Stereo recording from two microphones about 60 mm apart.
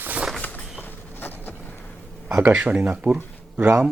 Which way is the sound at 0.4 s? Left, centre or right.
Left.